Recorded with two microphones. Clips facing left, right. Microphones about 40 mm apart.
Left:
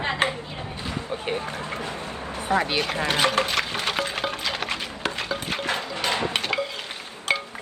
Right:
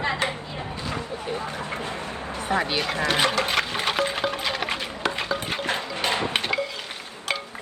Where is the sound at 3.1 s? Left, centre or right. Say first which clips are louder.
Left 1 dB; right.